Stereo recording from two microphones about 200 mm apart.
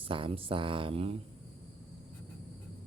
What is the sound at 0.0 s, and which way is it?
Speech, 25° right (ahead or behind).